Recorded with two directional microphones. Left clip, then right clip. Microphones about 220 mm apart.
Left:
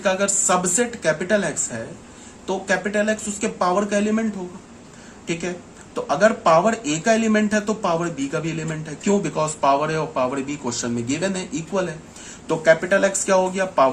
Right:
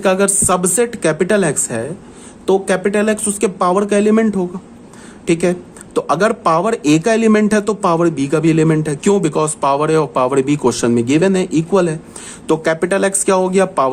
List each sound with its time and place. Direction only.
0.0 s speech: 55° right (ahead or behind)